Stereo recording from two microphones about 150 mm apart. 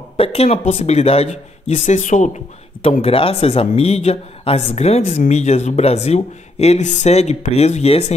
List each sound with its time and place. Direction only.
0.2 s speech: 40° left (ahead or behind)